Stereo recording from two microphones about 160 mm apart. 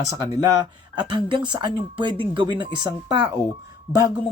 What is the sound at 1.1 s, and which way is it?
Speech, 30° right (ahead or behind).